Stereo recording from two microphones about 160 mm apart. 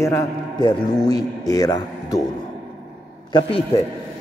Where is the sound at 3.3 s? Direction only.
30° left (ahead or behind).